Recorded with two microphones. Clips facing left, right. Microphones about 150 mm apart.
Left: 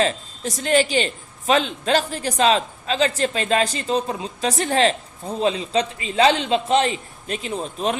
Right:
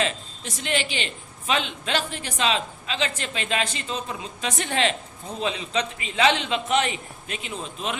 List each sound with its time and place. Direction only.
0.0 s a man's voice: 40° left (ahead or behind)